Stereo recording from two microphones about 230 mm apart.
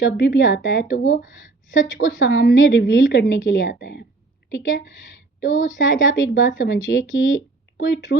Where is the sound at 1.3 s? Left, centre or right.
Left.